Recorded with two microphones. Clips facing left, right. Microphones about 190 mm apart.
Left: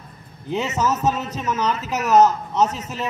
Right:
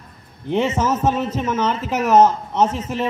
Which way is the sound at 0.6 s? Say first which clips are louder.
Right 3 dB; 25° right (ahead or behind).